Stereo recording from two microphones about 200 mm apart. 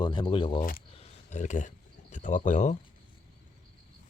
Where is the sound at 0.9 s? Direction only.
35° left (ahead or behind).